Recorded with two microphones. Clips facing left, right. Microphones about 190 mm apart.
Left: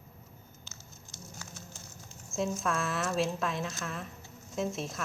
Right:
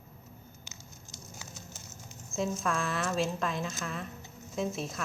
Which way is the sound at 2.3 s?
Centre (ahead or behind).